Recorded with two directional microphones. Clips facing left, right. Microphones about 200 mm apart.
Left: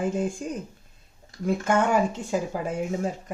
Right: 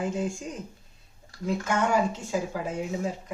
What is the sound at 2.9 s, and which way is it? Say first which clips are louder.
Speech: left 2 dB; 45° left (ahead or behind).